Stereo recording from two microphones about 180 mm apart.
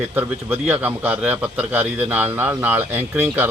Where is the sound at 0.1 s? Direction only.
10° right (ahead or behind).